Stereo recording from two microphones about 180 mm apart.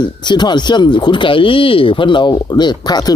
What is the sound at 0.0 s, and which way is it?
Speech, 25° left (ahead or behind).